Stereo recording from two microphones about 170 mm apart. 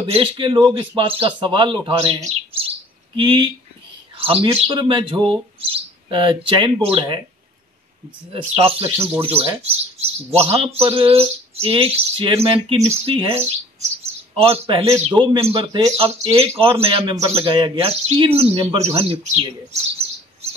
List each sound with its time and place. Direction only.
0.0 s speech: 35° right (ahead or behind)
2.2 s chirp: 35° right (ahead or behind)
3.2 s speech: 25° right (ahead or behind)
8.3 s speech: 30° right (ahead or behind)